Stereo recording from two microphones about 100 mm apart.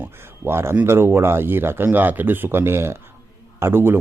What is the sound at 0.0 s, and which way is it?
Speech, 25° right (ahead or behind).